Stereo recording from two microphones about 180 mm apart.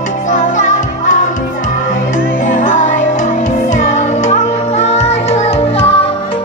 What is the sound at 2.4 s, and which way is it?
Music, 45° left (ahead or behind).